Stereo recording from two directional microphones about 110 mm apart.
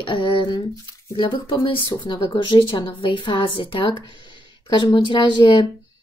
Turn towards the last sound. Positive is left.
turn(degrees=45)  # may be behind; listen again after turning